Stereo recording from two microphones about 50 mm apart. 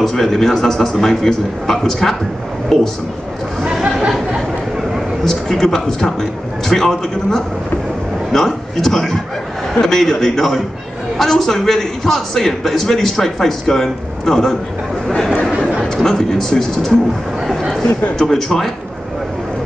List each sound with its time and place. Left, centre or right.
0.0 s a man's voice: centre
3.6 s chatter: centre
4.9 s a man's voice: centre
15.8 s a man's voice: centre
17.4 s a sound: centre
18.1 s a man's voice: centre